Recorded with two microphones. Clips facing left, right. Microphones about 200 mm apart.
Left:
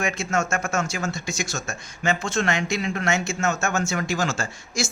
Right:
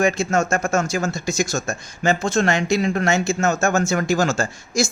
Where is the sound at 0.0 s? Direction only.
35° right (ahead or behind).